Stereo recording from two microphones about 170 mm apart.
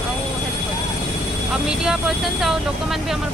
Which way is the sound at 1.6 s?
Centre (ahead or behind).